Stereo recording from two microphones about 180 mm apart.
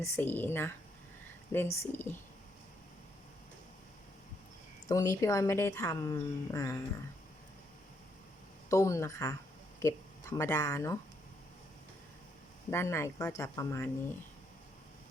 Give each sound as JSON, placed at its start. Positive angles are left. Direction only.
{"t": 0.0, "sound": "speech", "side_deg": 10}
{"t": 4.9, "sound": "speech", "side_deg": 20}
{"t": 8.7, "sound": "speech", "side_deg": 15}
{"t": 12.7, "sound": "speech", "side_deg": 15}